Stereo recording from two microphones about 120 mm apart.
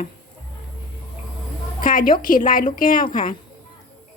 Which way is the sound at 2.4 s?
90° left.